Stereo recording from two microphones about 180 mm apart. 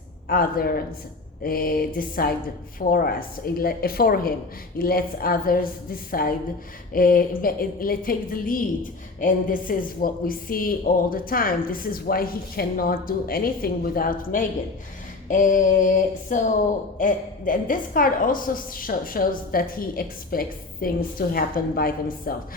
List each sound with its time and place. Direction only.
0.3 s a woman's voice: 55° left (ahead or behind)